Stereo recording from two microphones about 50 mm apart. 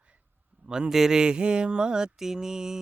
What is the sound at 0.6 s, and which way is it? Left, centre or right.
Speech, centre.